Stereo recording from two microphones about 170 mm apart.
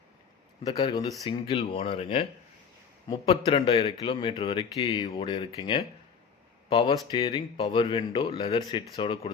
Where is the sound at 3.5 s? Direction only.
35° left (ahead or behind).